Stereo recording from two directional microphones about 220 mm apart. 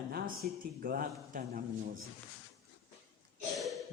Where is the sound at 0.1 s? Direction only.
40° right (ahead or behind).